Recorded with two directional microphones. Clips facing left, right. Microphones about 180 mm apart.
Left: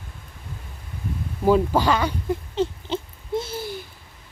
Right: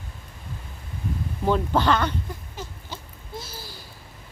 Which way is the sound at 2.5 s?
25° left (ahead or behind).